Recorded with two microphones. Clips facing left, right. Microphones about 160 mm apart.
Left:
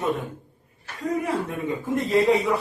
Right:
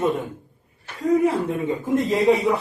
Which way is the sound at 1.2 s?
25° right (ahead or behind).